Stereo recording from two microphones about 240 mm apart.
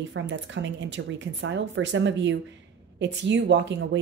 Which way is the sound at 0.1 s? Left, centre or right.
Right.